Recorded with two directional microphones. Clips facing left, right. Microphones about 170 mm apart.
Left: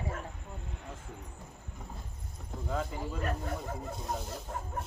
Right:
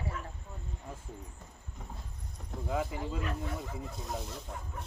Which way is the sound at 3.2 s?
50° left (ahead or behind).